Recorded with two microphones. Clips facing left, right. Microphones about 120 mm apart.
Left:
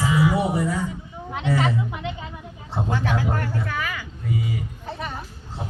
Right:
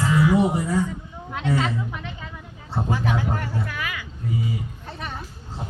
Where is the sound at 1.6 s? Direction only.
15° left (ahead or behind).